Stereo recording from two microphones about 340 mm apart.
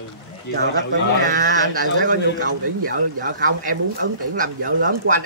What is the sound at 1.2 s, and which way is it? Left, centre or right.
A man's voice, right.